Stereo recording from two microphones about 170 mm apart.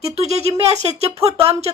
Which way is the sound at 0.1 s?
40° right (ahead or behind).